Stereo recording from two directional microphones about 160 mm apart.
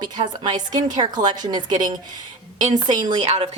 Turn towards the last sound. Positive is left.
turn(degrees=-25)  # may be behind; listen again after turning